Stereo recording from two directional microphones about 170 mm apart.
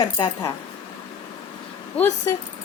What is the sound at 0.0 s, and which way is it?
Speech, 25° left (ahead or behind).